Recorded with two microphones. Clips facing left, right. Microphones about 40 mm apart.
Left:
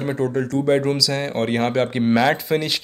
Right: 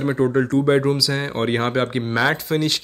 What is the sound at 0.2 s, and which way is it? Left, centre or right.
Speech, right.